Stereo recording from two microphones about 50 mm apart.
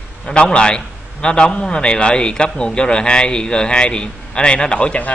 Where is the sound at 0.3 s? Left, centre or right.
Left.